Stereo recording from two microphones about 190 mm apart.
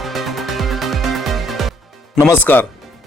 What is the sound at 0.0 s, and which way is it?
Music, centre (ahead or behind).